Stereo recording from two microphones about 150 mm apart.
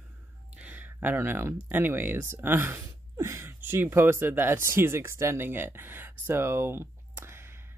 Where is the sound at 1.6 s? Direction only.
15° right (ahead or behind).